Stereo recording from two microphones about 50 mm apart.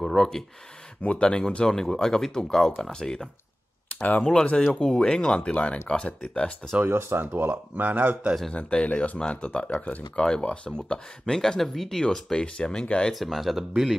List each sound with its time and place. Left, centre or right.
0.0 s speech: centre
1.0 s speech: left
1.7 s speech: centre
6.8 s speech: right
7.7 s speech: right
8.5 s speech: left
10.8 s speech: centre
13.1 s speech: centre